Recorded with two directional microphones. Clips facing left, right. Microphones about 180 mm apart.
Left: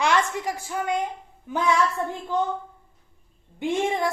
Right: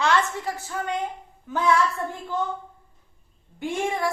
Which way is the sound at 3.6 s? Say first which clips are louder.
Left 2 dB; 20° left (ahead or behind).